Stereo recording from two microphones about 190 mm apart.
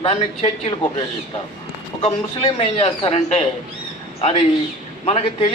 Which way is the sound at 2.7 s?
30° left (ahead or behind).